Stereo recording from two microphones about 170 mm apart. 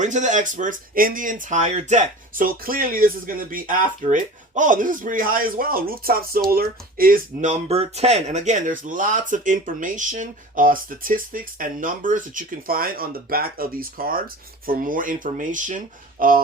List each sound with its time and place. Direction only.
0.0 s speech: 45° right (ahead or behind)